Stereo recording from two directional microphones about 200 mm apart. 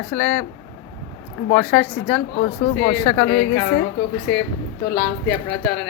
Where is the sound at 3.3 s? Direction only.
70° left (ahead or behind).